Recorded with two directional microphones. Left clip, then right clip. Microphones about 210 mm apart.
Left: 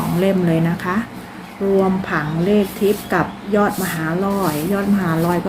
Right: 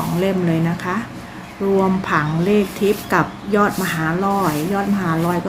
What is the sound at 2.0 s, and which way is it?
Speech, 15° right (ahead or behind).